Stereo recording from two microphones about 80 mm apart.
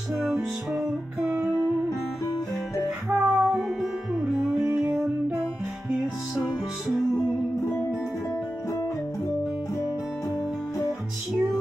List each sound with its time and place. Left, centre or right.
1.3 s music: centre
3.1 s music: centre
4.6 s music: right